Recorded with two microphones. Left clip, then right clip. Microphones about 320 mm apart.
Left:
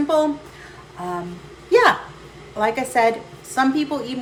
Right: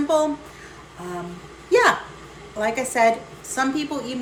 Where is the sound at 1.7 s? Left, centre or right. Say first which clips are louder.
Left 2 dB; centre.